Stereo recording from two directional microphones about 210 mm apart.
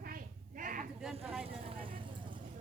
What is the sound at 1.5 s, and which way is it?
Vehicle, 25° right (ahead or behind).